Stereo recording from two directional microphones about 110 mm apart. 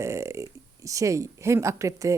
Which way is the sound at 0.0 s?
25° right (ahead or behind).